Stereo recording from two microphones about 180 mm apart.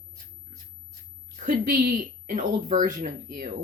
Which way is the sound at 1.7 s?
50° right (ahead or behind).